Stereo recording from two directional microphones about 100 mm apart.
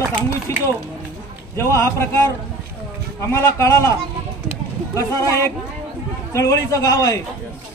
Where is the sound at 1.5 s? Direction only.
25° left (ahead or behind).